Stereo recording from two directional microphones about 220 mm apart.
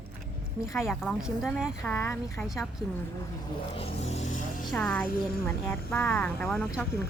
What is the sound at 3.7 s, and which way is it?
Speech, 30° left (ahead or behind).